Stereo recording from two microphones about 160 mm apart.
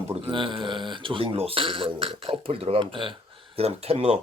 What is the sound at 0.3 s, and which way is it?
Speech, 30° right (ahead or behind).